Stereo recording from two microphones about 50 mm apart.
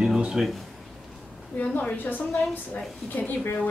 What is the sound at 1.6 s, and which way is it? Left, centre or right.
Speech, left.